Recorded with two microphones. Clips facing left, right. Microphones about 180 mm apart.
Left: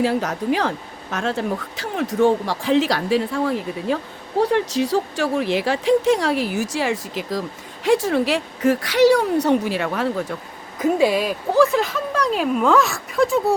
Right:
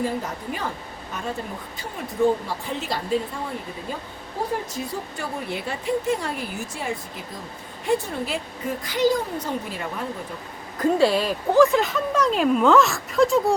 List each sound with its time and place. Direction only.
0.0 s a woman's voice: 85° left
10.8 s speech: 10° left (ahead or behind)